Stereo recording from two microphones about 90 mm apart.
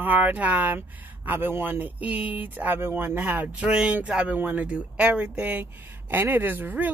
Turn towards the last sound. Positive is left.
turn(degrees=-20)  # may be behind; listen again after turning